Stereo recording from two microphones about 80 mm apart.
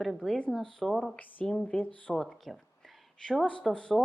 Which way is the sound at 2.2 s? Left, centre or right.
Centre.